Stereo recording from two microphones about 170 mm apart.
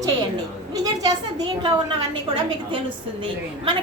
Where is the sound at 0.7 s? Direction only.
25° right (ahead or behind).